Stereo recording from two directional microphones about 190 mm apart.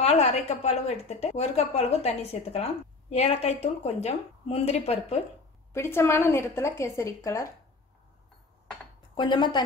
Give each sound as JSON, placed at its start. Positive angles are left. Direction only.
{"t": 0.0, "sound": "a woman's voice", "side_deg": 35}
{"t": 5.7, "sound": "a woman's voice", "side_deg": 15}
{"t": 9.1, "sound": "speech", "side_deg": 25}